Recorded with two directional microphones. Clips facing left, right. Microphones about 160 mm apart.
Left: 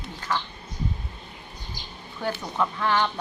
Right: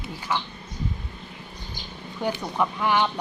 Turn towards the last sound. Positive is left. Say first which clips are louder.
# right 1 dB
turn(degrees=-15)  # may be behind; listen again after turning